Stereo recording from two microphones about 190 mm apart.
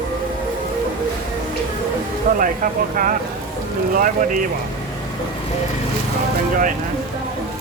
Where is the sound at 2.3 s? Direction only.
45° right (ahead or behind).